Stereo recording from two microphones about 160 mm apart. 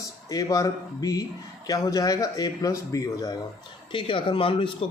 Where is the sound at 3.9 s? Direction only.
30° left (ahead or behind).